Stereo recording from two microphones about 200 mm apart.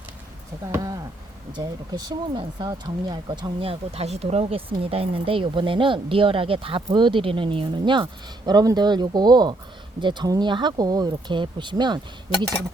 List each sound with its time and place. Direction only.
0.6 s speech: 15° right (ahead or behind)